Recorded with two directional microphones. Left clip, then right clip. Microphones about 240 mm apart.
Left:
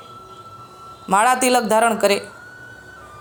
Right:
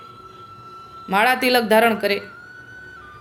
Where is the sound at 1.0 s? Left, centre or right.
Centre.